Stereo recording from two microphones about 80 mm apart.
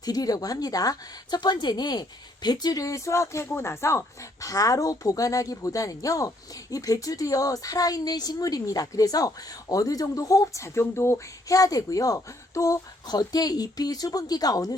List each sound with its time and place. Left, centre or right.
0.0 s speech: left
11.5 s speech: left
13.1 s speech: left